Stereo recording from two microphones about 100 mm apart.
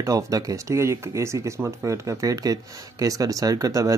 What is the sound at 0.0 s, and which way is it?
Speech, 35° right (ahead or behind).